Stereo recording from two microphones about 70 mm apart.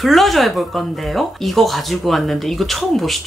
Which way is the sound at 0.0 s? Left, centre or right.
Centre.